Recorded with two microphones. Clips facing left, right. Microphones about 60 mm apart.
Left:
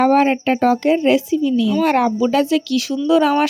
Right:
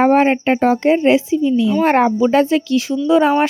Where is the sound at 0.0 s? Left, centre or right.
Right.